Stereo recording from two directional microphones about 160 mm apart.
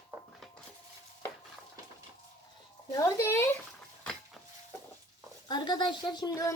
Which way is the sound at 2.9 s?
20° left (ahead or behind).